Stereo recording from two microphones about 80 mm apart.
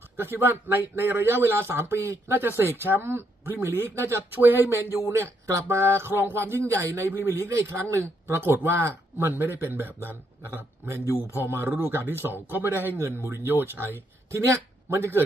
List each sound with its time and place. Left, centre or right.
0.2 s speech: right
11.1 s speech: left
11.4 s speech: right